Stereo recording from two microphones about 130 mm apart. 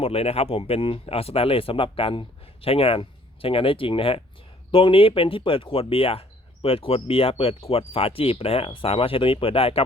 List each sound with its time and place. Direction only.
0.0 s speech: 50° left (ahead or behind)